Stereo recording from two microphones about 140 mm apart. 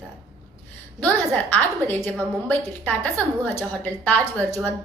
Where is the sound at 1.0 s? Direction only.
10° left (ahead or behind).